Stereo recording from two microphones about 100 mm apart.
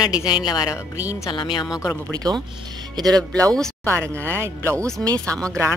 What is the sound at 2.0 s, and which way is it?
Speech, 40° right (ahead or behind).